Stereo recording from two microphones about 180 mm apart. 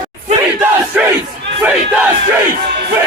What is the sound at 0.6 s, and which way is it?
Battle cry, 15° right (ahead or behind).